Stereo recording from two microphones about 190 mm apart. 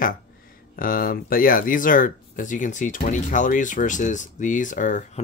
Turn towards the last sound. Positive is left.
turn(degrees=45)  # may be behind; listen again after turning